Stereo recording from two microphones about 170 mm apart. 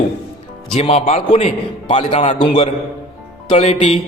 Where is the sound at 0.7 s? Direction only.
40° left (ahead or behind).